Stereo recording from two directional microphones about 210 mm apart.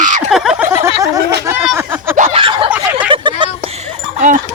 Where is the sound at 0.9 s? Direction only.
15° right (ahead or behind).